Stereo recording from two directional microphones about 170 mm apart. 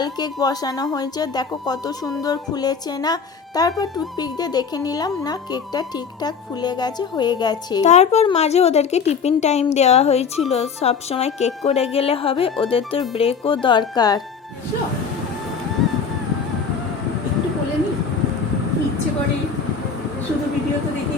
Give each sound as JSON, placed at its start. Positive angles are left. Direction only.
{"t": 0.0, "sound": "speech", "side_deg": 25}
{"t": 7.9, "sound": "a woman's voice", "side_deg": 40}